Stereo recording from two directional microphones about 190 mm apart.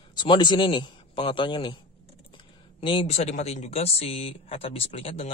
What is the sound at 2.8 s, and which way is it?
Speech, 30° left (ahead or behind).